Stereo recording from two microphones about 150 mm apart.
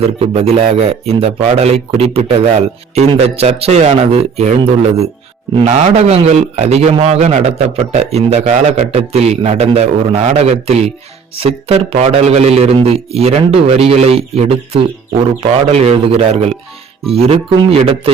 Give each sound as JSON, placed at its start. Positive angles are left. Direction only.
{"t": 0.2, "sound": "a man's voice", "side_deg": -40}